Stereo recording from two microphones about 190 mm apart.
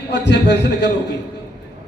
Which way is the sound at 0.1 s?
60° left (ahead or behind).